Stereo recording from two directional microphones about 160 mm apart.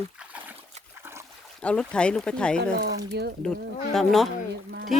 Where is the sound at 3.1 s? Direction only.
90° right.